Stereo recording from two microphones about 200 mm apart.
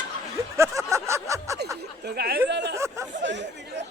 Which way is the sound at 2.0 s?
50° right (ahead or behind).